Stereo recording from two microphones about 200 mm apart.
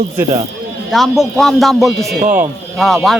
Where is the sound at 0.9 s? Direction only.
Centre (ahead or behind).